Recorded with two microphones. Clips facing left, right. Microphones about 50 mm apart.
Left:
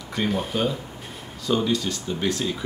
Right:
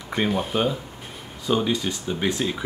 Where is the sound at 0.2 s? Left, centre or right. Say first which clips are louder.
Right 1 dB; right.